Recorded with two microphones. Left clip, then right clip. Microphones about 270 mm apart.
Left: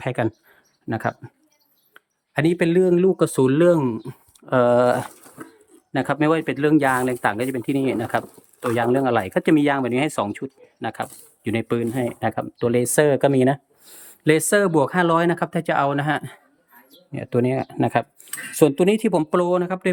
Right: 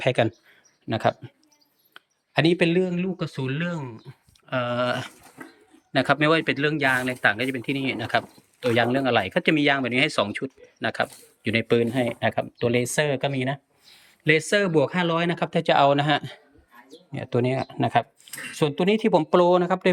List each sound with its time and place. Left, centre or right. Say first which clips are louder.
0.0 s speech: right 2 dB; centre